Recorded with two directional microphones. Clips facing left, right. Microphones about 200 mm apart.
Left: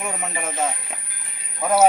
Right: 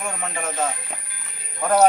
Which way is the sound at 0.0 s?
5° left (ahead or behind).